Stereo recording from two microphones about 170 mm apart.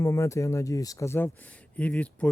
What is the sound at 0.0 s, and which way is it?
Speech, 15° left (ahead or behind).